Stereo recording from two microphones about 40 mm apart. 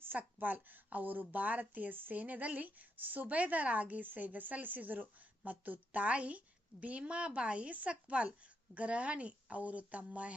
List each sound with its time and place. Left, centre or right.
0.2 s a woman's voice: right